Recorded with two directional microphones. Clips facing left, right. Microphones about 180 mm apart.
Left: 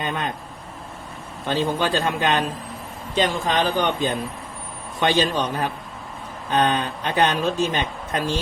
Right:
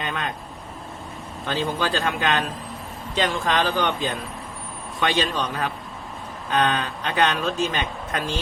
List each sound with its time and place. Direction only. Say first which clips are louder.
0.0 s vehicle: left 2 dB; 25° left (ahead or behind)
1.5 s speech: left 3 dB; 25° left (ahead or behind)
3.2 s speech: left 1 dB; 15° left (ahead or behind)
5.0 s speech: left 3 dB; 30° left (ahead or behind)